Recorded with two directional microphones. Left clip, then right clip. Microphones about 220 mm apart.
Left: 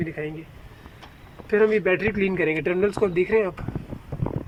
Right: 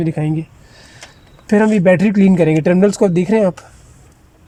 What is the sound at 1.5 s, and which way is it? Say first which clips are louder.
Speech: right 7 dB; 55° right (ahead or behind).